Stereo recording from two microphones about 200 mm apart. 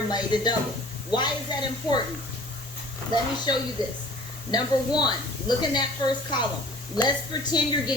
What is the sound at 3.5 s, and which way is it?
A woman's voice, 20° left (ahead or behind).